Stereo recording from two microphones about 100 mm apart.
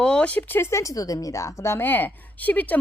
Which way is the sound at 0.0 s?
10° left (ahead or behind).